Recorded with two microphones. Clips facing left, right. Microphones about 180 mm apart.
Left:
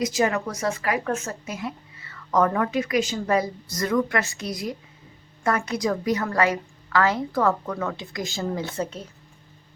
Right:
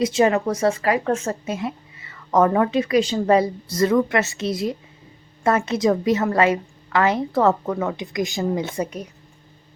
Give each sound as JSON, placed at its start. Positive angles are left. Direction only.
{"t": 0.0, "sound": "a woman's voice", "side_deg": -25}